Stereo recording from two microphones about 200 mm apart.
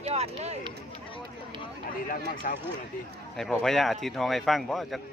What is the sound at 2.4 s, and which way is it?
Speech, 45° left (ahead or behind).